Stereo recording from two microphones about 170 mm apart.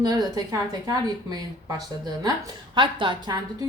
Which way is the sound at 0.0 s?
25° right (ahead or behind).